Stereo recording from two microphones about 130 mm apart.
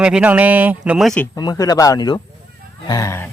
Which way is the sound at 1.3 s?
30° left (ahead or behind).